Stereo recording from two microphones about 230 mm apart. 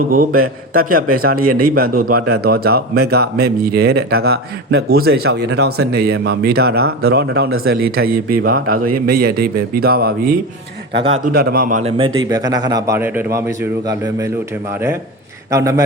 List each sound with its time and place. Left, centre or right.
0.1 s speech: right
0.4 s a man's voice: right
0.9 s speech: right
11.8 s a man's voice: right